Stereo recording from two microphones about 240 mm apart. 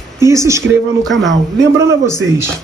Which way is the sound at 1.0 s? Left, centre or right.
Centre.